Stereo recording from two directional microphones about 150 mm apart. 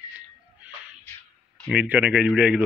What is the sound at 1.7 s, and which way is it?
Speech, 10° right (ahead or behind).